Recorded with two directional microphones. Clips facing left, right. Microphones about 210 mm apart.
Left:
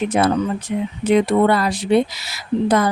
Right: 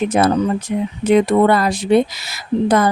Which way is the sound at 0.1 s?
45° right (ahead or behind).